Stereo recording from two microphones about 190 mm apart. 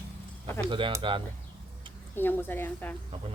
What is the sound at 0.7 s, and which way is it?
Speech, 25° right (ahead or behind).